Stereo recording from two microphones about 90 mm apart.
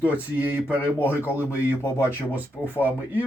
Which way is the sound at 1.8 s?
25° left (ahead or behind).